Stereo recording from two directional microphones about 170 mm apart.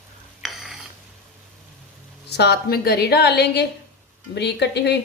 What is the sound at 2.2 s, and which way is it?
A woman's voice, 75° left (ahead or behind).